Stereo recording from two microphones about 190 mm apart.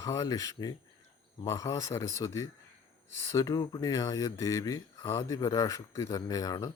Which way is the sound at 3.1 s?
90° right.